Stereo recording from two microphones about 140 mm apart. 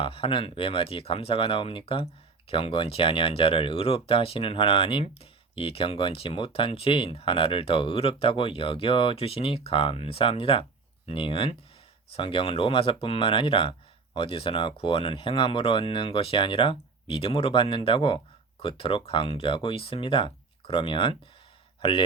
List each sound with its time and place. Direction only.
0.0 s speech: 40° left (ahead or behind)